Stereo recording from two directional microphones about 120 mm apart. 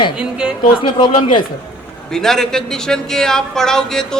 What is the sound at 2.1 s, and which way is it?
A man's voice, 5° left (ahead or behind).